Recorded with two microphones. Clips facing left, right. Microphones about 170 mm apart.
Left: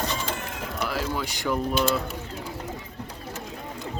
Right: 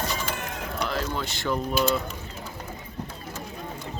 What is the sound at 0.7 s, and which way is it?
Speech, 5° left (ahead or behind).